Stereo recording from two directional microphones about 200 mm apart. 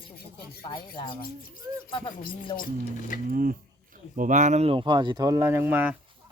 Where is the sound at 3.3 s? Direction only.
45° right (ahead or behind); by 5.9 s 10° right (ahead or behind).